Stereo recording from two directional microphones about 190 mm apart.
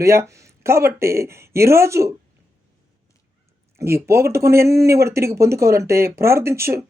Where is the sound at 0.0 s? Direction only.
15° right (ahead or behind).